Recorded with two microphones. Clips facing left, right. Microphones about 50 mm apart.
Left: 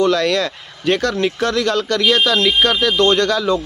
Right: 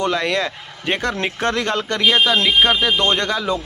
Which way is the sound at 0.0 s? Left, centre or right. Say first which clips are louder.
Left 4 dB; right.